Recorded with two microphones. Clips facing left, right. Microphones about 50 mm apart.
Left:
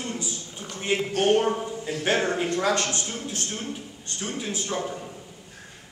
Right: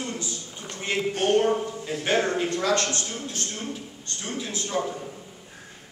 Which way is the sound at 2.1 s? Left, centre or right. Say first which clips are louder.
Even; left.